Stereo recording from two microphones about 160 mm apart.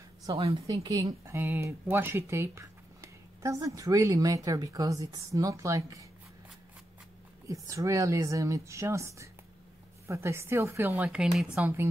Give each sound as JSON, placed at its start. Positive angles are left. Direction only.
{"t": 0.3, "sound": "speech", "side_deg": -30}
{"t": 7.4, "sound": "a woman's voice", "side_deg": -20}
{"t": 11.5, "sound": "a woman's voice", "side_deg": -15}